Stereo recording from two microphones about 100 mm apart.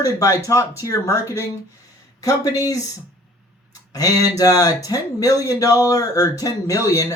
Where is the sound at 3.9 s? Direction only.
35° left (ahead or behind).